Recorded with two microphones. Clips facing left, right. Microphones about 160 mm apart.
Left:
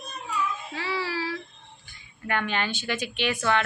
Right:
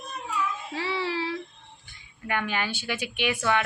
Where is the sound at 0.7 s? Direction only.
25° right (ahead or behind).